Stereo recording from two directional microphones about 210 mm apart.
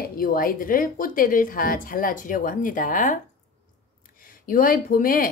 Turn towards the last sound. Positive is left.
turn(degrees=40)  # may be behind; listen again after turning